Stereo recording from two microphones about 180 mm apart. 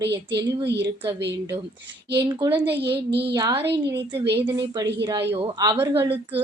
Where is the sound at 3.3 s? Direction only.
25° right (ahead or behind).